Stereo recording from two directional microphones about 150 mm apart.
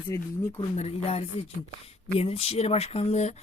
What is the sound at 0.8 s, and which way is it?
Speech, 40° left (ahead or behind).